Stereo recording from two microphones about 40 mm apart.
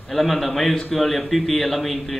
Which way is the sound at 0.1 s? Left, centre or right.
Centre.